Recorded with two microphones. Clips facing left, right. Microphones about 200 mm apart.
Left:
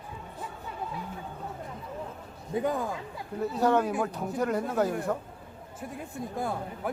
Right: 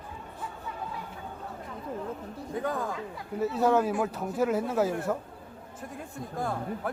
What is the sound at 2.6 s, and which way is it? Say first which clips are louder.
Speech: left 2 dB; 15° left (ahead or behind).